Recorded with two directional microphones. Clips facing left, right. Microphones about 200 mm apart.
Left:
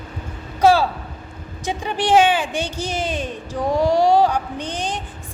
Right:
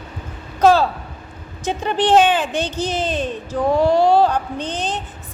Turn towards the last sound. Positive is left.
turn(degrees=10)  # may be behind; listen again after turning